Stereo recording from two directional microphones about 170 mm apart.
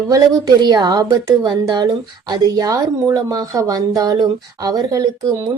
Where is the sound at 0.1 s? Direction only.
25° right (ahead or behind).